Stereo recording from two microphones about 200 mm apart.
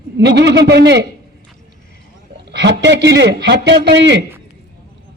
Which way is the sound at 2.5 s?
60° right (ahead or behind).